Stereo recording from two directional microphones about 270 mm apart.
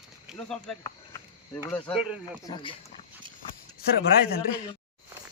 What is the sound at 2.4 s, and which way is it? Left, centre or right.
Speech, centre.